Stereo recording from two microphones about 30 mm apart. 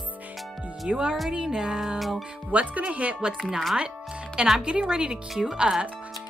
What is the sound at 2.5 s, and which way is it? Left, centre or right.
Speech, right.